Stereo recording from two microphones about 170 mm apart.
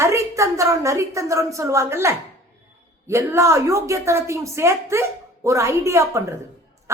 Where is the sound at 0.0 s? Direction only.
15° right (ahead or behind).